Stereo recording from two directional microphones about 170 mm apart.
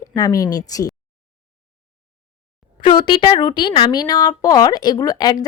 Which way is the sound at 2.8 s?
30° left (ahead or behind).